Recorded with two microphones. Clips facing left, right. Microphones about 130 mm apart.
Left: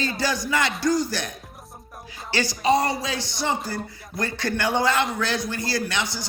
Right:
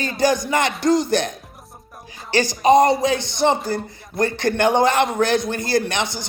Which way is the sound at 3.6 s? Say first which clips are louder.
Right 6 dB; 50° right (ahead or behind).